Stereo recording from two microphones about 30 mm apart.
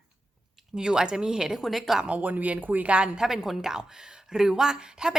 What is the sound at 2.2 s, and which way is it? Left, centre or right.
Speech, right.